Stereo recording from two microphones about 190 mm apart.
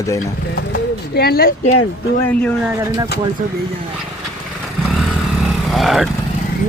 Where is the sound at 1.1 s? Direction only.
55° left (ahead or behind).